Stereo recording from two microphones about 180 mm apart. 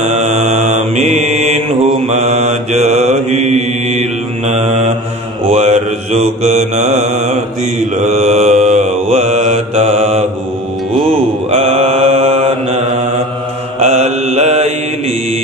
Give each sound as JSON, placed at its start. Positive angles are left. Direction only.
{"t": 0.0, "sound": "mantra", "side_deg": -40}
{"t": 11.5, "sound": "mantra", "side_deg": -35}